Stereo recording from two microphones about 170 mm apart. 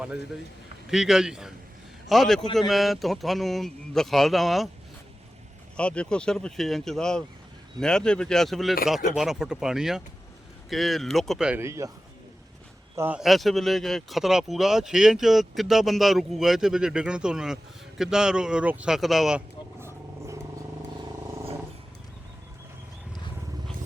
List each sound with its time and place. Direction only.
0.9 s speech: centre (ahead or behind)
5.7 s speech: 5° left (ahead or behind)
11.6 s speech: 15° right (ahead or behind)
13.0 s speech: 5° right (ahead or behind)
19.8 s vehicle: 15° right (ahead or behind)